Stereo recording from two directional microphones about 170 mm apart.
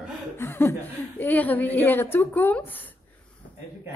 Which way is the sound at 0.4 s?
15° left (ahead or behind).